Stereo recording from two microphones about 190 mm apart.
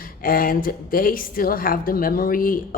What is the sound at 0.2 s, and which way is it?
Speech, 50° left (ahead or behind).